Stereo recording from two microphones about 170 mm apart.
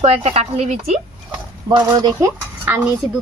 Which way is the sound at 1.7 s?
25° right (ahead or behind).